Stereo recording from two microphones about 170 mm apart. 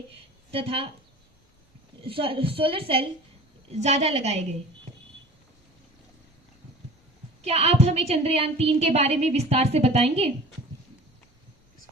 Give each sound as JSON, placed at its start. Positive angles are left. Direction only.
{"t": 0.5, "sound": "a woman's voice", "side_deg": -35}
{"t": 2.0, "sound": "a woman's voice", "side_deg": -35}
{"t": 7.4, "sound": "a woman's voice", "side_deg": -40}